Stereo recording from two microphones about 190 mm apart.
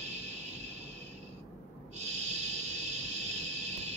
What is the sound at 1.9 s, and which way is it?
Owl, 35° right (ahead or behind).